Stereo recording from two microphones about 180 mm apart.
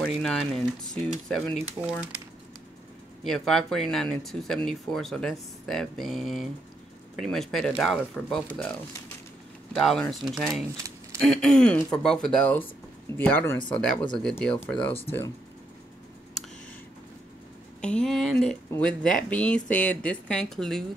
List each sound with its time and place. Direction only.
0.0 s speech: centre (ahead or behind)
3.3 s speech: centre (ahead or behind)
9.8 s speech: centre (ahead or behind)
17.8 s speech: 5° left (ahead or behind)